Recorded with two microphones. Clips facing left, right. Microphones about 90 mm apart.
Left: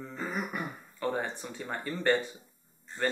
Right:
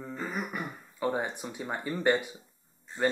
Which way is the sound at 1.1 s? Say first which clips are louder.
Right 1 dB; 15° right (ahead or behind).